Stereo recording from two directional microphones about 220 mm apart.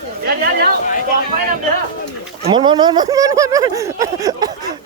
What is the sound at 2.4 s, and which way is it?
Speech, 20° right (ahead or behind).